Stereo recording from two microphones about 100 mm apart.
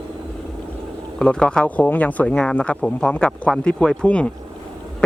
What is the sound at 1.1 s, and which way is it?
Speech, 10° left (ahead or behind).